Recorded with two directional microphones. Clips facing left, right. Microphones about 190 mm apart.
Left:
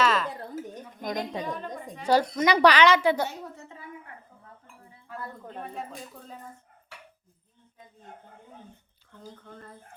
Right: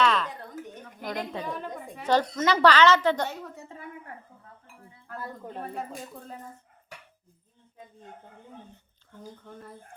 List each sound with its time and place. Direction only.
0.0 s a sound: 5° left (ahead or behind)
0.3 s a sound: 30° left (ahead or behind)
1.0 s a woman's voice: 15° left (ahead or behind)
1.5 s a woman's voice: 5° right (ahead or behind)
2.0 s a woman's voice: 10° left (ahead or behind)
4.6 s speech: 5° right (ahead or behind)
9.2 s speech: 10° right (ahead or behind)